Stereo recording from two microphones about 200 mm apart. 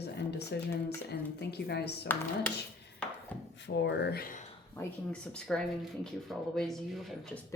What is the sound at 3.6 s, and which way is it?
Speech, 60° left (ahead or behind).